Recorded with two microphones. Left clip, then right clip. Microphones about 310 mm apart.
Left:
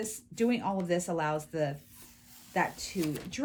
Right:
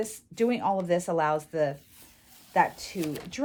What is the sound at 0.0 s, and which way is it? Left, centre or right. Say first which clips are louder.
Speech: right 4 dB; right.